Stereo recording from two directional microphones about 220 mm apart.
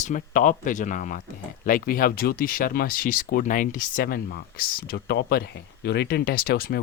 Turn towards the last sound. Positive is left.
turn(degrees=45)  # may be behind; listen again after turning